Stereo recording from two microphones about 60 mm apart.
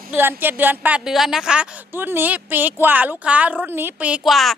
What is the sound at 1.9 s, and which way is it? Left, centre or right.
A woman's voice, right.